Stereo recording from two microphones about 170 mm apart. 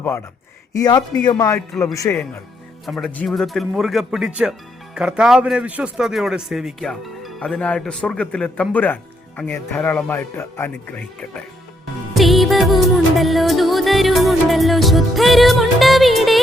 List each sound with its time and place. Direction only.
0.7 s a man's voice: 20° left (ahead or behind)
2.8 s a man's voice: centre (ahead or behind)
12.1 s music: centre (ahead or behind)